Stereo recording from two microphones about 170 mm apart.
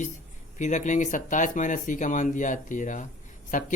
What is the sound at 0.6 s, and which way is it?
Speech, 45° left (ahead or behind).